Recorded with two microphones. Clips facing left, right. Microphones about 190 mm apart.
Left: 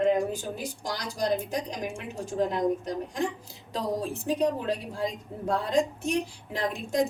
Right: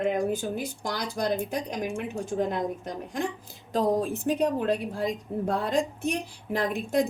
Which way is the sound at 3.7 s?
50° right (ahead or behind).